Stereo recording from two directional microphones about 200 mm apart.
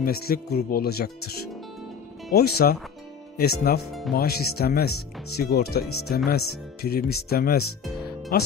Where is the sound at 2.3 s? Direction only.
50° left (ahead or behind).